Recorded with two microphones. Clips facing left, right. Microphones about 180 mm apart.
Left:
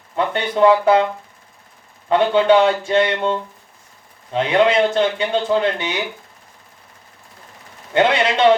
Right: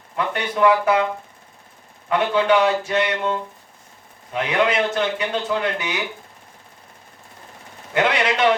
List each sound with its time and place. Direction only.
0.3 s a man's voice: 30° left (ahead or behind)
2.0 s a man's voice: 30° left (ahead or behind)
7.9 s a man's voice: 25° left (ahead or behind)